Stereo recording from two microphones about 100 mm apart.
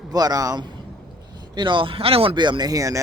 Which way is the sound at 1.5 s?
50° right (ahead or behind).